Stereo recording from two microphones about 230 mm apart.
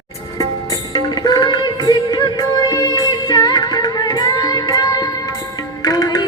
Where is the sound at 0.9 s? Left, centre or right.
Centre.